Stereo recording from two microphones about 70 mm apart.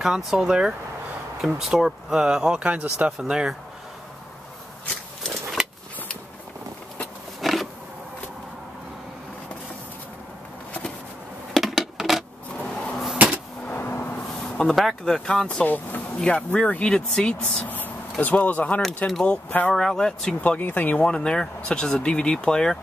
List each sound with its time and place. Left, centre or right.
0.0 s speech: centre
3.1 s speech: centre
5.2 s a sound: centre
7.4 s roaring cats: centre
11.5 s a sound: centre
13.7 s vehicle: left
14.6 s speech: centre; by 16.0 s left
16.2 s speech: centre
17.6 s a sound: left
18.2 s speech: left
19.7 s speech: centre
20.3 s speech: left
21.0 s speech: centre